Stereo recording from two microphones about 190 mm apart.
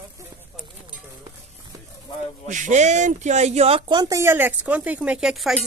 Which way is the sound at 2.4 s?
40° right (ahead or behind).